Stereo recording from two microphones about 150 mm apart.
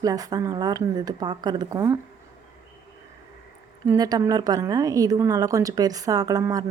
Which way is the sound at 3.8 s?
25° right (ahead or behind).